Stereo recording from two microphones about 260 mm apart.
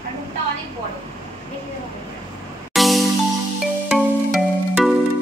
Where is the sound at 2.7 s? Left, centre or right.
Centre.